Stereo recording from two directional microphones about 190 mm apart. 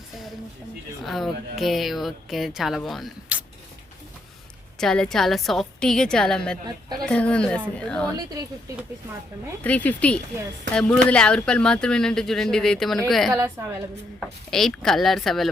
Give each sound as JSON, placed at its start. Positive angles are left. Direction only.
{"t": 1.0, "sound": "speech", "side_deg": 0}
{"t": 4.8, "sound": "speech", "side_deg": 5}
{"t": 9.6, "sound": "speech", "side_deg": 10}
{"t": 13.3, "sound": "a woman's voice", "side_deg": -15}
{"t": 14.2, "sound": "speech", "side_deg": 0}